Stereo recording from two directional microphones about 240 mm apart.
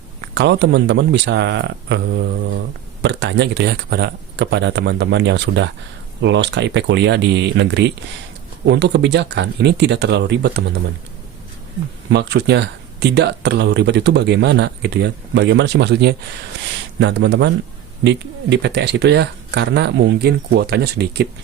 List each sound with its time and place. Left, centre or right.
0.3 s speech: right
12.1 s speech: right